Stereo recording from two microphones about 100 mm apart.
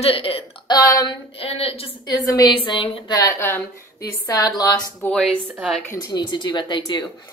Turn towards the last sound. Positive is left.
turn(degrees=50)  # may be behind; listen again after turning